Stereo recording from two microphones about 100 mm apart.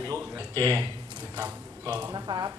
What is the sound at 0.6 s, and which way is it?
Speech, 30° right (ahead or behind).